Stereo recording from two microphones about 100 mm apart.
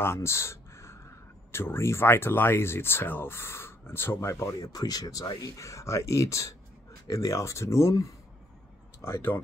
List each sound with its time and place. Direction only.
0.0 s speech: 25° left (ahead or behind)
4.6 s speech: 40° left (ahead or behind); by 9.4 s 20° left (ahead or behind)